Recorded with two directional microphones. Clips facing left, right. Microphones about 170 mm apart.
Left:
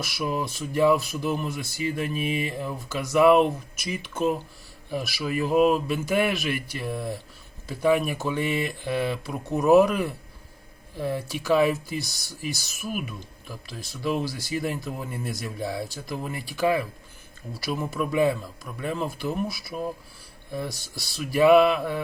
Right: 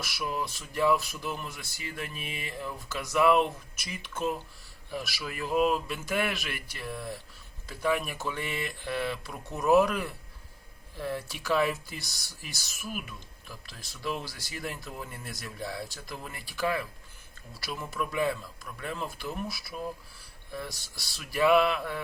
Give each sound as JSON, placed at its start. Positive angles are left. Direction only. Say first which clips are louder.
{"t": 0.0, "sound": "speech", "louder": "left 5 dB", "side_deg": 15}